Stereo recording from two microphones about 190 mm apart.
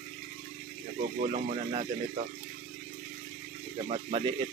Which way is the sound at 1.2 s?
35° right (ahead or behind).